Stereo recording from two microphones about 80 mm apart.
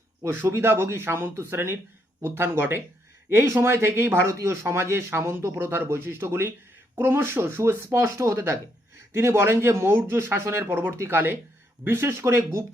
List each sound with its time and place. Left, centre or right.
0.2 s speech: right